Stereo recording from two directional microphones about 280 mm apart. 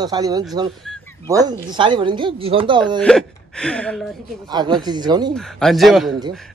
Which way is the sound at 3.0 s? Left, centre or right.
Centre.